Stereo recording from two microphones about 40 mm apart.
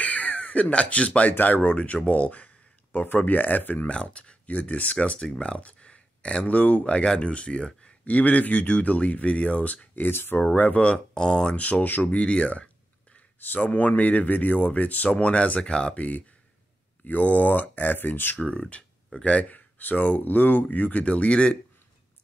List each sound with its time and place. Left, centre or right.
0.0 s crow: left
1.4 s speech: left
3.9 s speech: left
8.0 s speech: left
10.0 s speech: left
10.4 s speech: left
11.1 s speech: left
11.5 s speech: left
13.6 s speech: left
16.0 s speech: left
17.9 s speech: left
19.1 s speech: left
19.5 s speech: left